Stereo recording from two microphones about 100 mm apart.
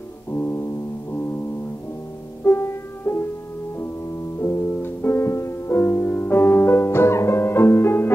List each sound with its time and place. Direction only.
0.3 s music: 25° left (ahead or behind)
2.4 s music: 25° left (ahead or behind)
4.4 s music: 25° left (ahead or behind)